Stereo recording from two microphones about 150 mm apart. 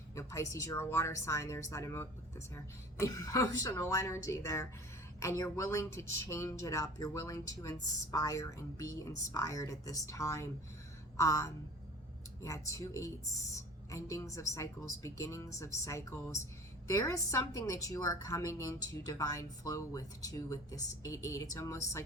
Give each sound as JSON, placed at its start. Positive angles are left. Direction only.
{"t": 0.2, "sound": "speech", "side_deg": 20}